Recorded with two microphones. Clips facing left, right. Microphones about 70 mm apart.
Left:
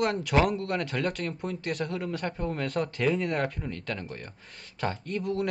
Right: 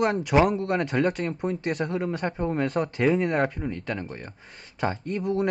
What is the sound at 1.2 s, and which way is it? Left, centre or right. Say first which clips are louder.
A man's voice: right 5 dB; right.